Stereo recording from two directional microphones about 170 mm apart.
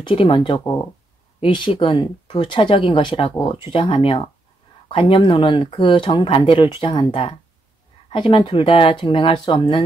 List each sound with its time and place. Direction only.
0.0 s speech: 30° left (ahead or behind)